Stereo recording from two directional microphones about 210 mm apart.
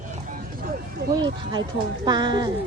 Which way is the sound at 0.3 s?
45° right (ahead or behind).